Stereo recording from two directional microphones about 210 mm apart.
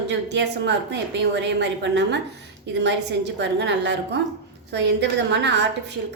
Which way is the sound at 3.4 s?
55° right (ahead or behind).